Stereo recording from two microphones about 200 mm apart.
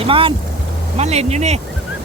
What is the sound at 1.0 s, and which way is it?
Speech, 30° right (ahead or behind).